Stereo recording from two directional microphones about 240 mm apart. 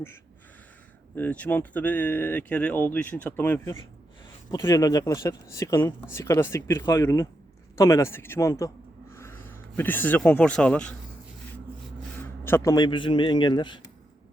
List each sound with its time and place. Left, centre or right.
1.1 s speech: centre
12.5 s a man's voice: centre